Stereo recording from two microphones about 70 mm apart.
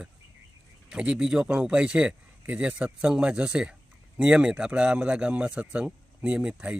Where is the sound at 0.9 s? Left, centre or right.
Centre.